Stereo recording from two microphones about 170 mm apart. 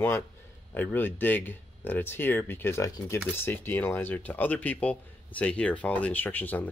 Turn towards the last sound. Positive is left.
turn(degrees=10)  # may be behind; listen again after turning